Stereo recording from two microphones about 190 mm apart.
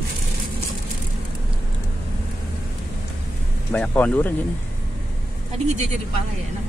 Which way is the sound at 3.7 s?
5° left (ahead or behind).